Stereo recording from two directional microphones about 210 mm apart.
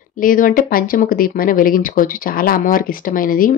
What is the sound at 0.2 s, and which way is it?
Speech, 40° left (ahead or behind).